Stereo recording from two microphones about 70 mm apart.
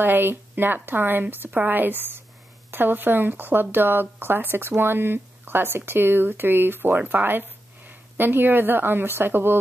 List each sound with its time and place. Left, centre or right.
0.0 s a woman's voice: right